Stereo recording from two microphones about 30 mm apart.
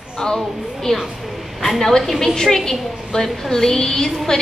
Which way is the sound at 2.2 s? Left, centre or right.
Centre.